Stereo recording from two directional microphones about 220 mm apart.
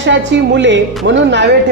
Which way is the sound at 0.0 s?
55° right (ahead or behind).